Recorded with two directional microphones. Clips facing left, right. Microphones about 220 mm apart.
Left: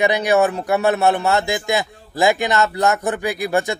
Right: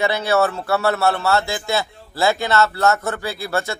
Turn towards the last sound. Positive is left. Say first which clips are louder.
# left 4 dB
turn(degrees=15)  # may be behind; listen again after turning